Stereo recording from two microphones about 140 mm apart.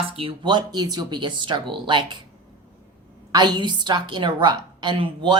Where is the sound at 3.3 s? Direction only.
30° right (ahead or behind).